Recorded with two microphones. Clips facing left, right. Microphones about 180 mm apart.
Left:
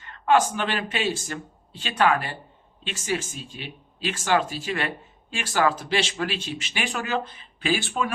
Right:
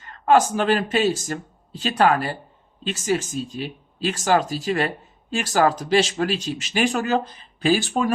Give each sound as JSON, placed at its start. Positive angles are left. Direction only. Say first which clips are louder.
{"t": 0.0, "sound": "speech", "louder": "right 3 dB", "side_deg": -40}